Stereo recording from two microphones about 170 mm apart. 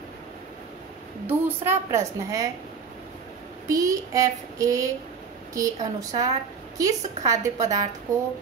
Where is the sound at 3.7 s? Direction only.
20° right (ahead or behind).